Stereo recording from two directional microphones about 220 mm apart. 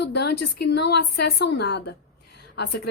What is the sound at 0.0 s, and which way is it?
A woman's voice, 50° left (ahead or behind).